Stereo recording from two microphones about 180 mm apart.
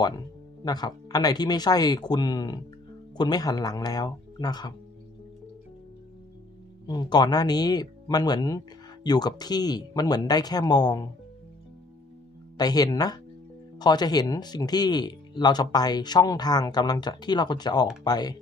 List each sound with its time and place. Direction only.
0.0 s speech: 25° left (ahead or behind)
6.8 s speech: 25° left (ahead or behind)
12.5 s speech: 20° left (ahead or behind)